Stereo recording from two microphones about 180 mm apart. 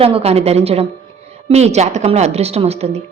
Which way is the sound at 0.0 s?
35° right (ahead or behind).